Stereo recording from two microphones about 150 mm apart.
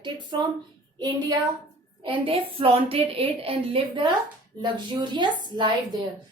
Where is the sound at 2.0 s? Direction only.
35° right (ahead or behind).